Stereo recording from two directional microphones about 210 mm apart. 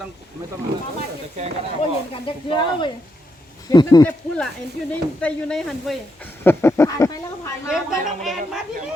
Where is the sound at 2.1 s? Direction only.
25° left (ahead or behind).